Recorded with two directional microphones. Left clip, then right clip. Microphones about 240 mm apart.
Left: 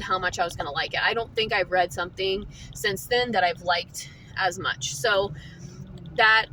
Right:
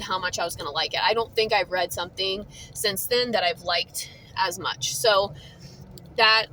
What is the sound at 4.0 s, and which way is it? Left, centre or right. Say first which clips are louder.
Speech: right 1 dB; centre.